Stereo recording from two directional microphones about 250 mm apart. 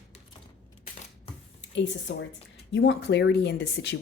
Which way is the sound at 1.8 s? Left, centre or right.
Left.